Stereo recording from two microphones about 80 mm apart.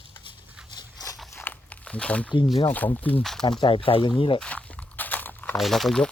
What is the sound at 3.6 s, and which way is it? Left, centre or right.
Speech, left.